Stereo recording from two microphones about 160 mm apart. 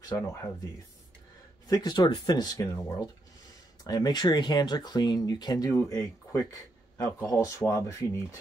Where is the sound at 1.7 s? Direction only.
25° left (ahead or behind).